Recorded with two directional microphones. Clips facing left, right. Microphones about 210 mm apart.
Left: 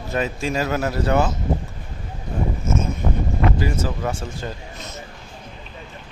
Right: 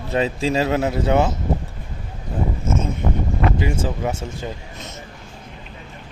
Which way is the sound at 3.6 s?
20° right (ahead or behind).